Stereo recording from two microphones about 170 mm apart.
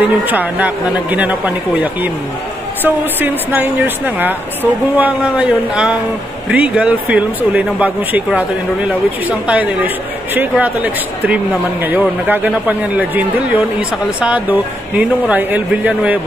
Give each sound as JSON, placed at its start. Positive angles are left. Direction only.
{"t": 0.0, "sound": "speech", "side_deg": -10}